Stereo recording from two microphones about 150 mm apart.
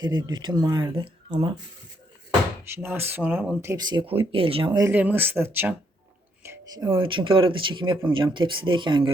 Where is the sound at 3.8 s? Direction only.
35° right (ahead or behind).